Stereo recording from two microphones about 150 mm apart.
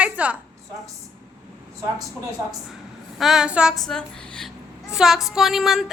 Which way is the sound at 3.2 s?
5° right (ahead or behind).